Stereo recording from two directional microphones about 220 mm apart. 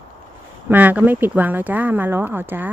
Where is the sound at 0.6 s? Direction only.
10° right (ahead or behind).